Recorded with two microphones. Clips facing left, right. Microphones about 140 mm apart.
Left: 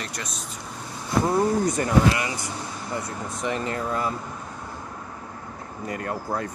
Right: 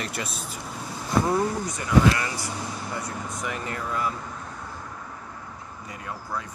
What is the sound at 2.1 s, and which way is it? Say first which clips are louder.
Speech: left 1 dB; 20° left (ahead or behind).